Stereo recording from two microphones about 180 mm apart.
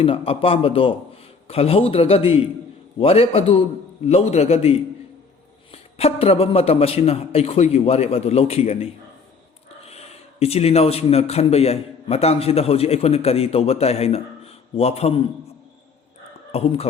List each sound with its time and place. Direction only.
0.0 s a man's voice: 30° left (ahead or behind)
10.4 s a man's voice: 35° left (ahead or behind)
16.5 s speech: 35° left (ahead or behind)